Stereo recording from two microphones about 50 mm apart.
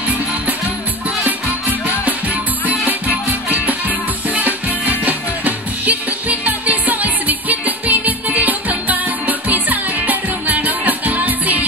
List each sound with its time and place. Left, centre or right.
1.2 s music: right